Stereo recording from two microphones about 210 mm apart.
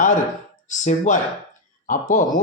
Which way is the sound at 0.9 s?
35° left (ahead or behind).